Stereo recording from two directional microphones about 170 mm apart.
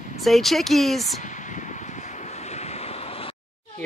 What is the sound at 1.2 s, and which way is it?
Vehicle, 45° left (ahead or behind).